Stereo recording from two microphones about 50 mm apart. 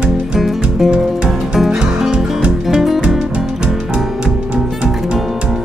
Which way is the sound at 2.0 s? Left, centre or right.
Centre.